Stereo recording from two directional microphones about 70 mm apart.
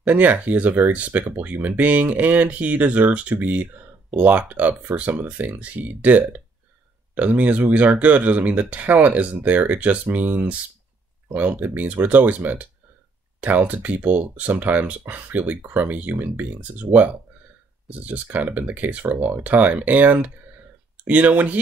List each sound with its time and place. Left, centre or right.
0.0 s speech: right